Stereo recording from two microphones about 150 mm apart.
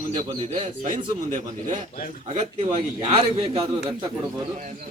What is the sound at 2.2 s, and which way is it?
Speech, 45° right (ahead or behind).